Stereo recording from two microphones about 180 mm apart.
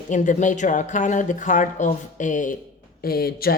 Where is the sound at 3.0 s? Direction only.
60° left (ahead or behind).